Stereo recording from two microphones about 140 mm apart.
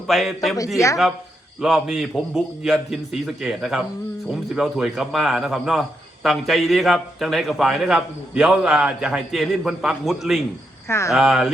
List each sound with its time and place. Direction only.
0.1 s a man's voice: centre (ahead or behind)
1.6 s a man's voice: 5° right (ahead or behind)
10.8 s speech: 20° left (ahead or behind)
11.1 s a man's voice: centre (ahead or behind)